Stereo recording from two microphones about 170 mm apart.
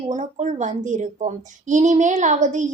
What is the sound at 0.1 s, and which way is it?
A woman's voice, 45° right (ahead or behind).